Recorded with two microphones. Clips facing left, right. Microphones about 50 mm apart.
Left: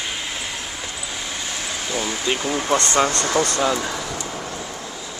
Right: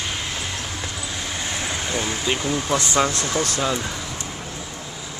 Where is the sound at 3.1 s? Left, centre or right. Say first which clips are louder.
Left 3 dB; left.